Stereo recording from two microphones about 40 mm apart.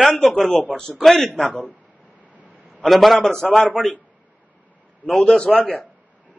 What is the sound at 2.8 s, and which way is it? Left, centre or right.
A man's voice, centre.